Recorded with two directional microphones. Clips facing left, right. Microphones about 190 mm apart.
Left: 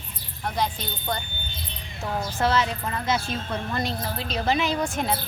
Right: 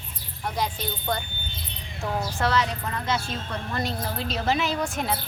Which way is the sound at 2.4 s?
Centre (ahead or behind).